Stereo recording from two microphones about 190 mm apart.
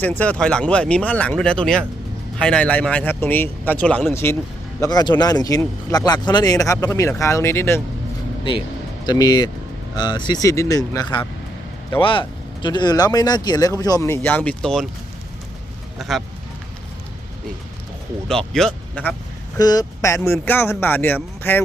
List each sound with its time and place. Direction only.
0.0 s speech: 10° left (ahead or behind)
9.0 s speech: 20° left (ahead or behind); by 14.8 s 5° left (ahead or behind)
16.0 s speech: centre (ahead or behind)
18.3 s speech: 5° left (ahead or behind)
19.5 s speech: 20° left (ahead or behind)